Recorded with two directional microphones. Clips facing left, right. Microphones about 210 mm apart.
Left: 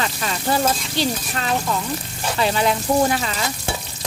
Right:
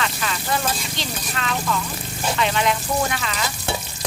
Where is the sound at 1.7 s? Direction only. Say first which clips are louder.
Left 1 dB; 35° left (ahead or behind).